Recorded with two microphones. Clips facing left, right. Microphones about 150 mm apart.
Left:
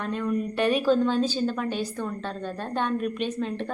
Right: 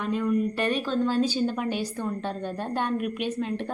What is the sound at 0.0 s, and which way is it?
Speech, 5° right (ahead or behind).